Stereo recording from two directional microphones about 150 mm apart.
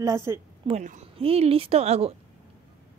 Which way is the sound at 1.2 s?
40° right (ahead or behind).